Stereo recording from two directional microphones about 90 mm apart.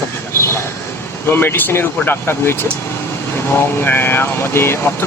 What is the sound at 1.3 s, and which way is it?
Speech, 25° left (ahead or behind).